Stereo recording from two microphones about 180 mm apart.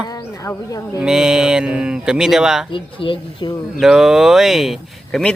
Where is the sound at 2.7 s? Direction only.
30° left (ahead or behind).